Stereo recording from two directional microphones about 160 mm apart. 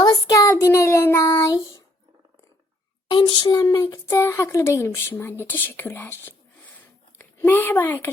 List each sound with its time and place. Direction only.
0.3 s child singing: 20° left (ahead or behind)
3.1 s a child's voice: 30° left (ahead or behind); by 6.3 s 15° left (ahead or behind)
6.7 s a sound: 15° left (ahead or behind)